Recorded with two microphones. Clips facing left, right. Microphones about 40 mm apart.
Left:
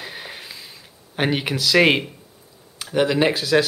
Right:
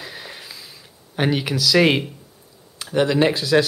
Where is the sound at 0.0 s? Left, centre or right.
Centre.